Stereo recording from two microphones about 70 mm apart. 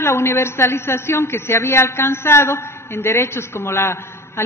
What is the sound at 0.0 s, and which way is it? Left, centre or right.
A man's voice, left.